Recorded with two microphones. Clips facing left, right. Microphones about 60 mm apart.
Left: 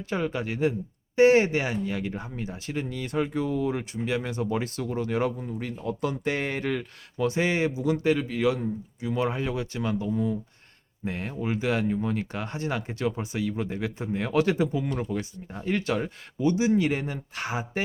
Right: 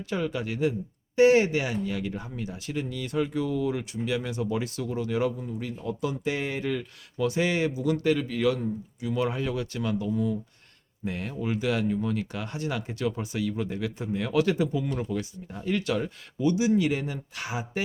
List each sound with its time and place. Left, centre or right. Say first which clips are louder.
0.1 s speech: left 1 dB; left
7.2 s speech: left 1 dB; left